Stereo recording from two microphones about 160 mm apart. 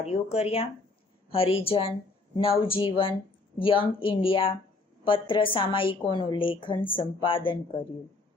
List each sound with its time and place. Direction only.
0.0 s a woman's voice: 40° left (ahead or behind)